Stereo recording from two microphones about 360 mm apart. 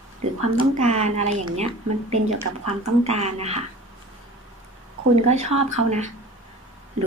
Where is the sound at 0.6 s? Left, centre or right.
Centre.